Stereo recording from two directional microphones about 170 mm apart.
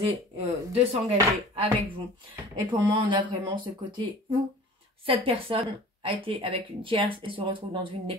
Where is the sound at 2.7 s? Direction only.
30° right (ahead or behind).